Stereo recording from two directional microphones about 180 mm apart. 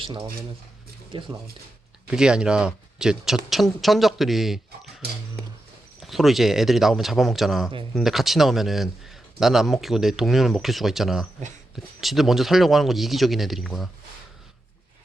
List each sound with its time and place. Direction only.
1.1 s speech: 30° right (ahead or behind)
2.0 s speech: 5° right (ahead or behind)